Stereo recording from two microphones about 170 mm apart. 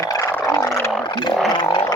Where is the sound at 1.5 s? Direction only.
25° left (ahead or behind).